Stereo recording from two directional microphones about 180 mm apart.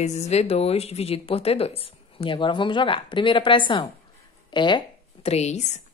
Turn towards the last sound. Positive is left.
turn(degrees=40)  # may be behind; listen again after turning